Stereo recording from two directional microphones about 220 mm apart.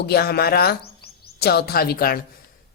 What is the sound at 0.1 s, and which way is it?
A woman's voice, 45° left (ahead or behind).